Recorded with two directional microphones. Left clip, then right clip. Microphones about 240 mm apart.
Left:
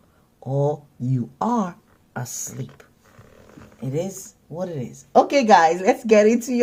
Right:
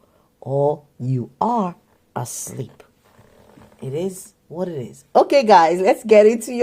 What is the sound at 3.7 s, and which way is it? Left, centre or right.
Speech, right.